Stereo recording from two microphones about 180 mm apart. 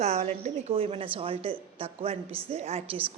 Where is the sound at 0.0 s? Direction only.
35° right (ahead or behind).